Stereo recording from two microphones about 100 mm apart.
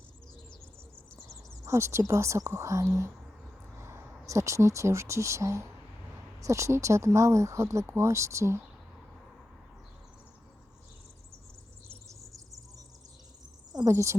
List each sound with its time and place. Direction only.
1.6 s speech: 25° right (ahead or behind)
12.0 s insect: 35° right (ahead or behind)
13.8 s speech: 30° right (ahead or behind)